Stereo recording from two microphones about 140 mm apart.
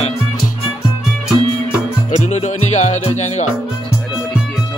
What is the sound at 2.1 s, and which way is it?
Speech, 55° left (ahead or behind).